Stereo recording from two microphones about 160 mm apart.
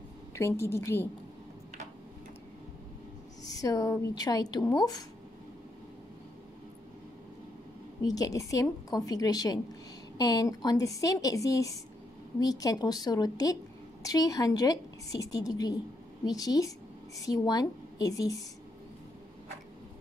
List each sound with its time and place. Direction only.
0.3 s a woman's voice: 15° left (ahead or behind)
3.4 s a woman's voice: 20° left (ahead or behind)
8.1 s a woman's voice: 20° left (ahead or behind)